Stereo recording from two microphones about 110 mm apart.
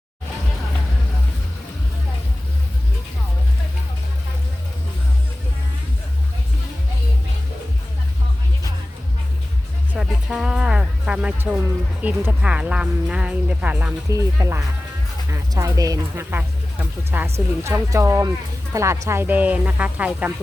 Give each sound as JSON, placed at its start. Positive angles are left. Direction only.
{"t": 9.9, "sound": "music", "side_deg": -5}
{"t": 12.0, "sound": "speech", "side_deg": -10}
{"t": 14.1, "sound": "speech", "side_deg": -30}
{"t": 17.1, "sound": "speech", "side_deg": -20}